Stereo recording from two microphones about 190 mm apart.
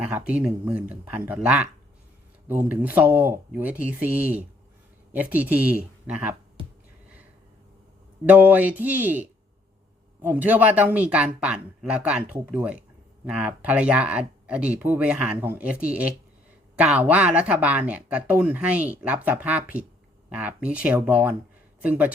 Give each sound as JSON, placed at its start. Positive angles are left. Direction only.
{"t": 0.0, "sound": "speech", "side_deg": -5}
{"t": 8.3, "sound": "speech", "side_deg": -10}